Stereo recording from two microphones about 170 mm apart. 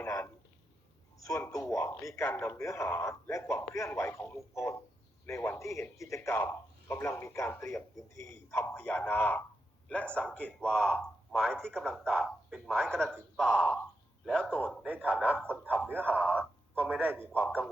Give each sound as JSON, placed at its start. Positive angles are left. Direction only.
{"t": 0.0, "sound": "a sound", "side_deg": 15}
{"t": 1.2, "sound": "a man's voice", "side_deg": 20}
{"t": 14.8, "sound": "speech", "side_deg": -10}
{"t": 15.3, "sound": "speech", "side_deg": 10}
{"t": 17.2, "sound": "speech", "side_deg": 10}